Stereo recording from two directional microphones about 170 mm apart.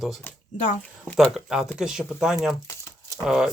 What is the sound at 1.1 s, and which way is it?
Speech, centre (ahead or behind).